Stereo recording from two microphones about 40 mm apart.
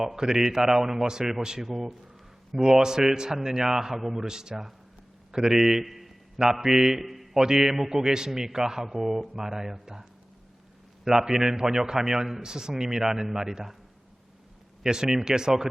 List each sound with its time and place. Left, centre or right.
0.0 s a man's voice: centre
5.3 s a sound: centre
6.4 s a man's voice: centre
14.8 s a man's voice: centre